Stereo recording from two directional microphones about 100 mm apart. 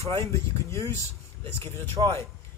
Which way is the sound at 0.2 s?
30° left (ahead or behind).